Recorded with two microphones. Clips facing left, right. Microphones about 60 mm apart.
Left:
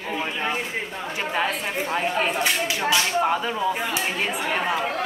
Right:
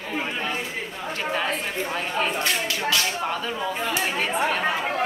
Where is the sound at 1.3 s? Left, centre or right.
Centre.